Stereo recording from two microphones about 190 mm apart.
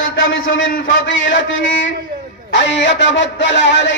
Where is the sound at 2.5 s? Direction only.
70° left (ahead or behind).